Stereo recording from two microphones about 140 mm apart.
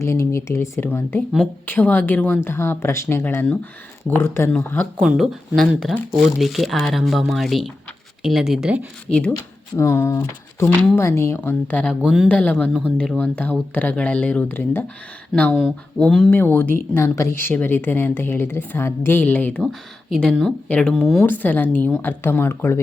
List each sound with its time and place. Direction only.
0.0 s a woman's voice: 20° left (ahead or behind)
4.9 s speech: centre (ahead or behind)
9.0 s a woman's voice: 10° left (ahead or behind)
9.3 s a woman's voice: 20° left (ahead or behind); by 16.4 s 5° left (ahead or behind)
16.4 s a woman's voice: 15° left (ahead or behind)